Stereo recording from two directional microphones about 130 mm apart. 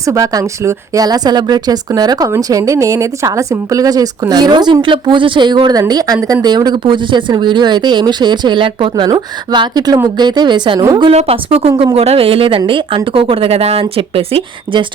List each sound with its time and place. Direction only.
0.0 s a woman's voice: 25° right (ahead or behind)
11.1 s speech: 50° right (ahead or behind)